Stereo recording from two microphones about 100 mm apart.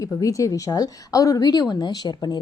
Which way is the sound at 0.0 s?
35° left (ahead or behind).